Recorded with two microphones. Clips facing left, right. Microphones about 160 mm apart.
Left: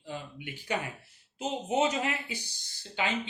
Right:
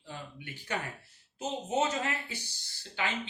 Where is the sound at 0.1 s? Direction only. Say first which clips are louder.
Left 4 dB; 15° left (ahead or behind).